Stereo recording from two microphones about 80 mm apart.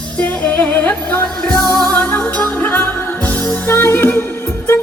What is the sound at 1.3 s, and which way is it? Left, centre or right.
Music, centre.